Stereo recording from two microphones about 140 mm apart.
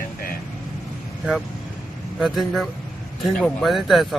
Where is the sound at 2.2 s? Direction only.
Centre (ahead or behind).